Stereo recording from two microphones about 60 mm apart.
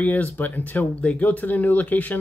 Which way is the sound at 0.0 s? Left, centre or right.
Left.